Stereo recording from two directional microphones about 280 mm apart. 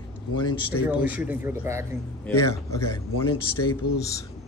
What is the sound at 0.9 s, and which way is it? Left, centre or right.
Speech, centre.